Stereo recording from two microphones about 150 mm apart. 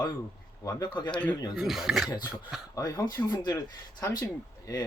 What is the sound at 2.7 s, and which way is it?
Speech, 25° left (ahead or behind).